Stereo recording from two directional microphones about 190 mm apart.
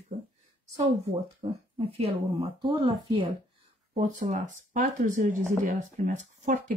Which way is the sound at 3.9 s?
40° right (ahead or behind).